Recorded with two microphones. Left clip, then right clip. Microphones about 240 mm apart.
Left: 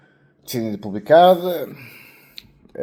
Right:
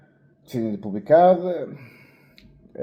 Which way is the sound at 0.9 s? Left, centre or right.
Left.